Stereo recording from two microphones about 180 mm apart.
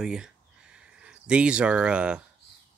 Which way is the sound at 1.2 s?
5° right (ahead or behind).